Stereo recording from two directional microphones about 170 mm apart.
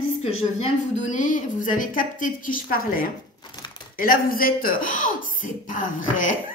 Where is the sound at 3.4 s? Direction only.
25° left (ahead or behind).